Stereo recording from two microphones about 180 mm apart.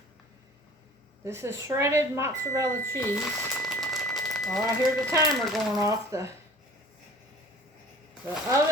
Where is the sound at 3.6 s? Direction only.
Centre (ahead or behind).